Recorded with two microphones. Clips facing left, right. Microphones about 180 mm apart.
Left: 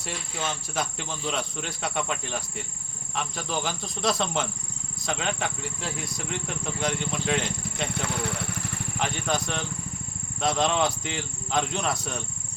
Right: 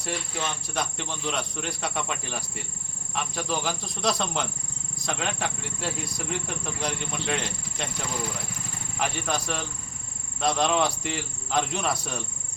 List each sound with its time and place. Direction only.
0.7 s speech: centre (ahead or behind)
8.0 s speech: 65° left (ahead or behind)
9.0 s speech: centre (ahead or behind)